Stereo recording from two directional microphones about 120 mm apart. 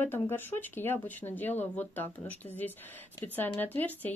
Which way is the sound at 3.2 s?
15° left (ahead or behind).